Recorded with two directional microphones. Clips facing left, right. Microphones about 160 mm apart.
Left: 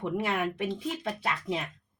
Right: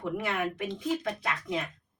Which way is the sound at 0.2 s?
30° left (ahead or behind).